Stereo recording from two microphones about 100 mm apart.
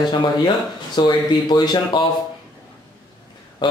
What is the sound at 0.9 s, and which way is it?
Speech, 45° left (ahead or behind).